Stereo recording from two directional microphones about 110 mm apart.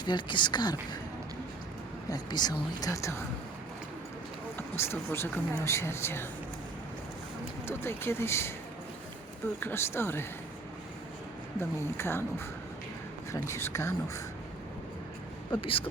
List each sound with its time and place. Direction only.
0.0 s speech: 45° left (ahead or behind)
2.0 s speech: 40° left (ahead or behind)
4.8 s speech: 20° left (ahead or behind)
7.7 s speech: 20° left (ahead or behind)
9.6 s speech: 20° left (ahead or behind)
11.9 s speech: 20° left (ahead or behind)
13.3 s speech: 25° left (ahead or behind)
15.5 s speech: 50° left (ahead or behind)